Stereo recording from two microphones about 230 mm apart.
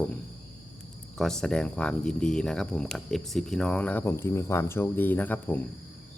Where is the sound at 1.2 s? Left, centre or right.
Centre.